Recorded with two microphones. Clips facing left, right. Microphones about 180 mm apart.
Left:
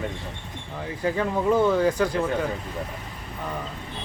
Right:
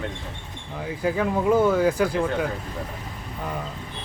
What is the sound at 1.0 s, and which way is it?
Speech, 5° right (ahead or behind).